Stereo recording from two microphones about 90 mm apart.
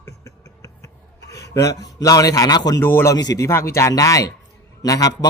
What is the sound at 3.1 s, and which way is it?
A man's voice, 35° left (ahead or behind).